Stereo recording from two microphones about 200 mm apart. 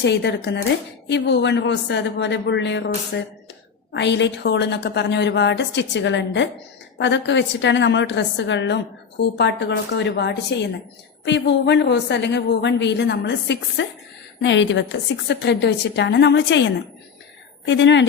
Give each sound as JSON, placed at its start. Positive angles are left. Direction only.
{"t": 0.0, "sound": "a woman's voice", "side_deg": 55}
{"t": 17.7, "sound": "a woman's voice", "side_deg": 65}